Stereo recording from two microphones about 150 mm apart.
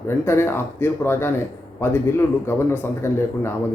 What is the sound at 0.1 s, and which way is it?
Speech, 15° left (ahead or behind).